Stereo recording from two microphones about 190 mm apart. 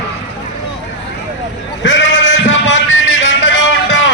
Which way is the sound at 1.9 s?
75° left (ahead or behind).